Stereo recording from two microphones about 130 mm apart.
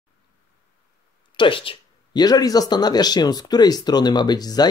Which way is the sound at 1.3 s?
40° left (ahead or behind).